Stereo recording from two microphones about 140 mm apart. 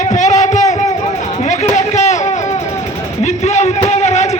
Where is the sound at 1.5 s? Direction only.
55° left (ahead or behind).